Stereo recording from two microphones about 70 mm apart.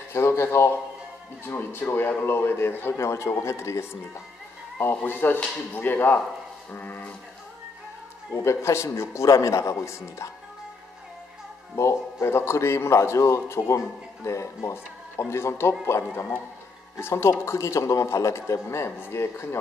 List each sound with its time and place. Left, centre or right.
0.1 s a sound: left
1.4 s a man's voice: left
4.7 s a man's voice: left
8.3 s a man's voice: left
11.7 s a man's voice: left